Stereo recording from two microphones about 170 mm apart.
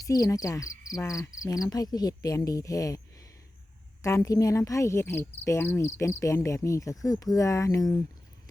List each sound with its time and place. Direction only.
0.0 s frog: 20° left (ahead or behind)
4.0 s insect: 20° left (ahead or behind)
7.0 s frog: 20° left (ahead or behind)